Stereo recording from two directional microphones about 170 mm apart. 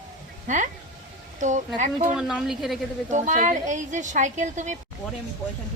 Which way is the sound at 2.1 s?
5° right (ahead or behind).